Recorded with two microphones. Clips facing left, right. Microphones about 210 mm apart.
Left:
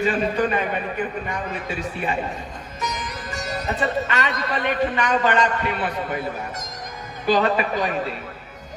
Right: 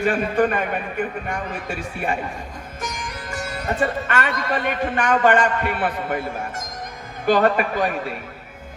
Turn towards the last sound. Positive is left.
turn(degrees=-55)  # may be behind; listen again after turning